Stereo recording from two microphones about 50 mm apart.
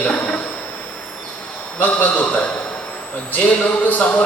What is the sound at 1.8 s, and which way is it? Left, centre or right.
Speech, left.